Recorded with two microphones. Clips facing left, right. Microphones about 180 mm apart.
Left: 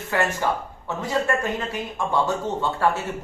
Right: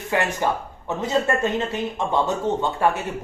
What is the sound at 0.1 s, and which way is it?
A man's voice, 20° right (ahead or behind).